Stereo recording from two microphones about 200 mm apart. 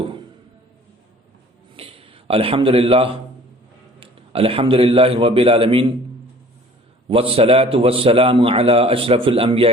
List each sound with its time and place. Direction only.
1.7 s a sound: 30° right (ahead or behind)
4.0 s a man's voice: 30° right (ahead or behind)
7.1 s a man's voice: 30° right (ahead or behind)